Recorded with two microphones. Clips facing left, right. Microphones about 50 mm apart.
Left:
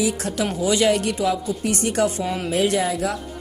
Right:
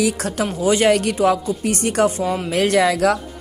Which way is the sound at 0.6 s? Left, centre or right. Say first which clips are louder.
Right 3 dB; right.